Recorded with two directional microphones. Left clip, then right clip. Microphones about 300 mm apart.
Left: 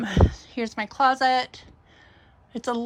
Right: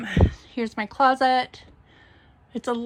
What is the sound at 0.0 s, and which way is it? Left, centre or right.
A woman's voice, centre.